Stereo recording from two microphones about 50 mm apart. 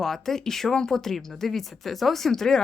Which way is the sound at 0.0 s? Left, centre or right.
Centre.